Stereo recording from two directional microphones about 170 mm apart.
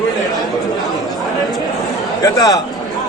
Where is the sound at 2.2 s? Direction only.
20° left (ahead or behind).